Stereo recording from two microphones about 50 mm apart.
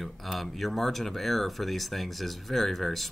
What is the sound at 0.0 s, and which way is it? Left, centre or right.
Speech, centre.